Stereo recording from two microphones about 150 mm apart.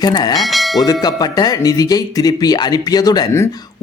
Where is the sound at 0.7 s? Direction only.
25° left (ahead or behind).